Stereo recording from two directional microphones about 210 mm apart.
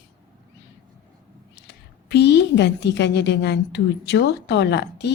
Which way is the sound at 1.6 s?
55° left (ahead or behind).